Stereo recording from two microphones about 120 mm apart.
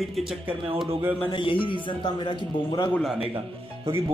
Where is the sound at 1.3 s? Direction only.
45° left (ahead or behind).